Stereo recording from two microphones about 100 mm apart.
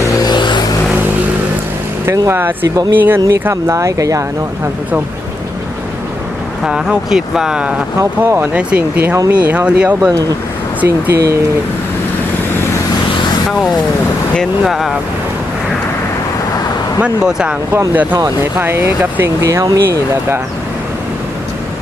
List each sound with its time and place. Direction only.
0.0 s vehicle: 40° left (ahead or behind)
2.1 s speech: 25° right (ahead or behind)
6.7 s speech: 5° right (ahead or behind)
8.2 s speech: 20° right (ahead or behind)
10.8 s speech: 25° right (ahead or behind)
13.5 s speech: centre (ahead or behind)
17.0 s speech: 10° right (ahead or behind)
17.7 s speech: 20° right (ahead or behind)
19.6 s speech: 35° right (ahead or behind)